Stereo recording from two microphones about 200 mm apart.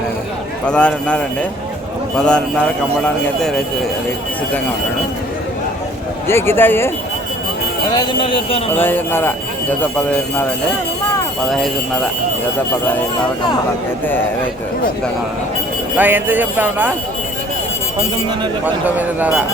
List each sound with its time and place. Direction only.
0.6 s a man's voice: 5° left (ahead or behind)
6.2 s speech: 10° left (ahead or behind)
7.9 s speech: 25° left (ahead or behind)
8.7 s speech: 10° left (ahead or behind)
11.4 s a man's voice: centre (ahead or behind)
16.0 s speech: 10° right (ahead or behind)
18.6 s speech: 10° right (ahead or behind)